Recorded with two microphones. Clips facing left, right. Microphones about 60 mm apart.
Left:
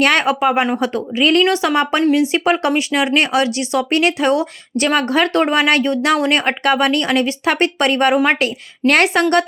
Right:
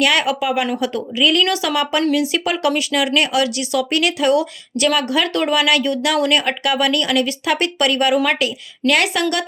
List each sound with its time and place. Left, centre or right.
0.0 s speech: left